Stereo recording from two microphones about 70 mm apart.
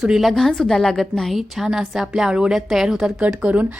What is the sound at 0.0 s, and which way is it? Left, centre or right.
A woman's voice, centre.